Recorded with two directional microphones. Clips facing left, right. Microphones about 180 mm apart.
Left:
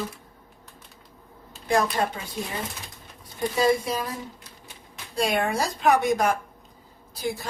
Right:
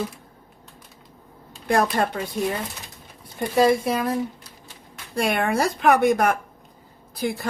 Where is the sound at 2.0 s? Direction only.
55° right (ahead or behind).